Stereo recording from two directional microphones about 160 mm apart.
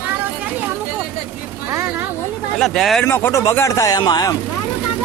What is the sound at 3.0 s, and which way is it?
Speech, 15° left (ahead or behind).